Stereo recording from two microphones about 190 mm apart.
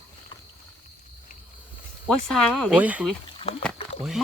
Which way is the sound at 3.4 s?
30° left (ahead or behind).